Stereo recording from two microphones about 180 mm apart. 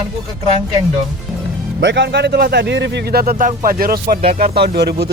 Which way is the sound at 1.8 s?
75° right (ahead or behind).